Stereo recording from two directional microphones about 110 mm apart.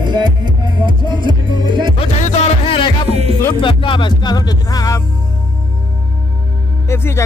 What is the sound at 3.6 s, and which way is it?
Music, 50° left (ahead or behind).